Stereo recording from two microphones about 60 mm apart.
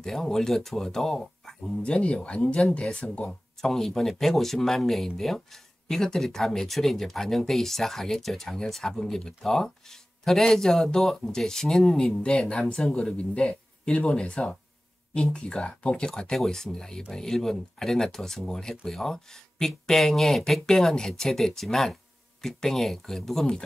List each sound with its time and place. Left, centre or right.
0.0 s speech: centre
1.9 s speech: centre